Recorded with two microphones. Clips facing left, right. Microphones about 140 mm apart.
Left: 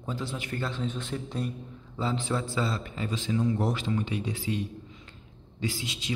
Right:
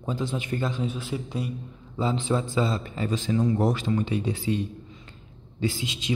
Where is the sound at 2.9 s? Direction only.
40° right (ahead or behind).